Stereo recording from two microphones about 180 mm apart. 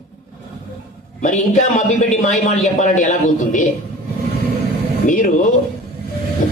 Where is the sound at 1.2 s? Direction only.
45° left (ahead or behind).